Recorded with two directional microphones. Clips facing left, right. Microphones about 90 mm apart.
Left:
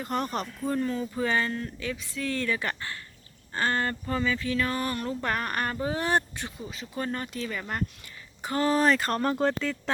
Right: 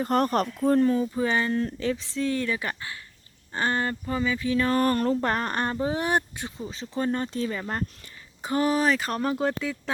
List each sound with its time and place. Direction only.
0.0 s speech: 45° right (ahead or behind)
0.8 s speech: 25° right (ahead or behind)
1.6 s speech: 30° right (ahead or behind)
4.6 s a sound: 40° right (ahead or behind)
5.8 s speech: 20° right (ahead or behind)
6.6 s speech: 30° right (ahead or behind)
8.7 s speech: 5° right (ahead or behind)